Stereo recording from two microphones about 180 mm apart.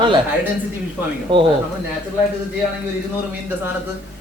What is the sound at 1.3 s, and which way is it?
Speech, 30° right (ahead or behind).